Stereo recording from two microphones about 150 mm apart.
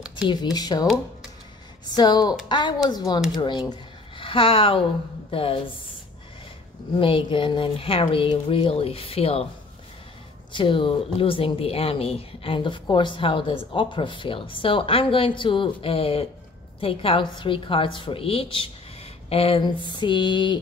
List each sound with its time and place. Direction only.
0.3 s speech: 30° left (ahead or behind)
1.9 s speech: 25° left (ahead or behind)
7.0 s speech: 35° left (ahead or behind)
10.5 s speech: 35° left (ahead or behind)